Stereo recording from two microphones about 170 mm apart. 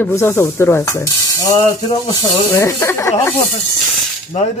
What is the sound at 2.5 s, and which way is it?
Speech, 15° left (ahead or behind).